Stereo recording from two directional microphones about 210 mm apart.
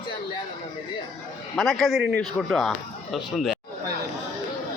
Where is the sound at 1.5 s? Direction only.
Centre (ahead or behind).